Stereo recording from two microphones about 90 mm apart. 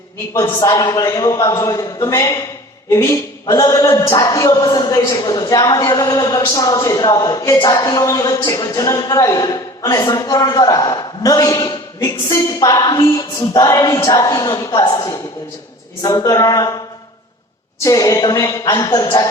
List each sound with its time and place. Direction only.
0.6 s a woman's voice: 45° left (ahead or behind); by 3.2 s 30° left (ahead or behind)
3.4 s a woman's voice: 45° left (ahead or behind)
16.0 s a woman's voice: 45° left (ahead or behind)
17.8 s a woman's voice: 40° left (ahead or behind)